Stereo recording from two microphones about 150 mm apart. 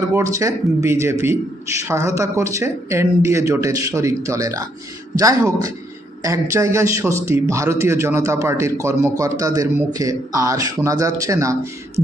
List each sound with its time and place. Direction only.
0.1 s a man's voice: 20° right (ahead or behind)